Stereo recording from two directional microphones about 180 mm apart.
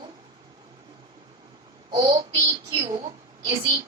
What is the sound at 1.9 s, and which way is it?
A child's voice, 25° right (ahead or behind).